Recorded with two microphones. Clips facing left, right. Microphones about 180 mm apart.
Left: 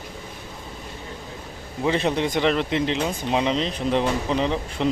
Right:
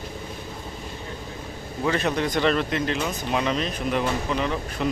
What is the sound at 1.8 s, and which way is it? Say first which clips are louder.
Speech: left 2 dB; 25° left (ahead or behind).